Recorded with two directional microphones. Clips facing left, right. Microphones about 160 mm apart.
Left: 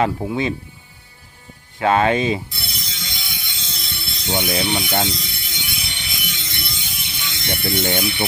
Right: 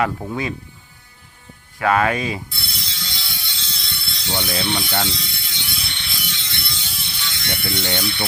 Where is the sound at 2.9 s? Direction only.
20° left (ahead or behind).